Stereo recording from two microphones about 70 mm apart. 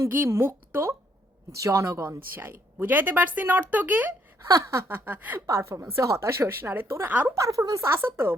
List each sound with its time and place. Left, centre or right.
0.3 s speech: right
2.3 s speech: right
4.4 s speech: right
4.9 s speech: right
5.5 s speech: right
7.3 s speech: right